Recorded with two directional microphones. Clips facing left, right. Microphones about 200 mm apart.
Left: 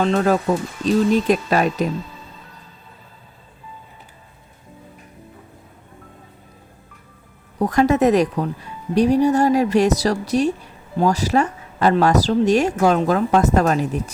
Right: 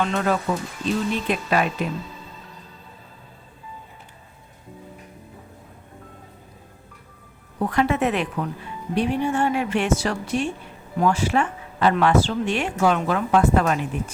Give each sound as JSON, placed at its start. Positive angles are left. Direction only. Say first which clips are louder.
{"t": 0.0, "sound": "speech", "louder": "left 5 dB", "side_deg": 35}
{"t": 7.6, "sound": "speech", "louder": "left 6 dB", "side_deg": 40}